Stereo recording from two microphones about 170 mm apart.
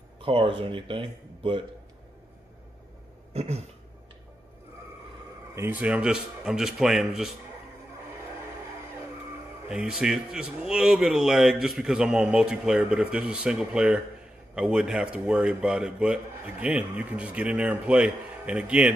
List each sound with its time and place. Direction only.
0.2 s speech: 30° right (ahead or behind)
3.3 s a sound: 40° right (ahead or behind)
5.5 s a man's voice: 10° right (ahead or behind)
9.7 s a man's voice: 5° right (ahead or behind)